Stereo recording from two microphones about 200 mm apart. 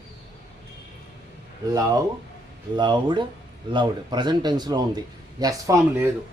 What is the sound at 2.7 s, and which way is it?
A man's voice, 20° right (ahead or behind).